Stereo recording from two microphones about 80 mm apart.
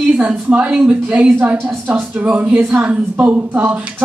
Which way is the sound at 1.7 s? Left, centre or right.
Right.